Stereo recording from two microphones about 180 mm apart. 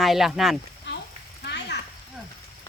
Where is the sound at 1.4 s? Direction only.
70° left (ahead or behind).